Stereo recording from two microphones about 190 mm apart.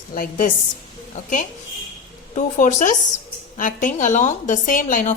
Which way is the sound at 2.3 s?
40° left (ahead or behind).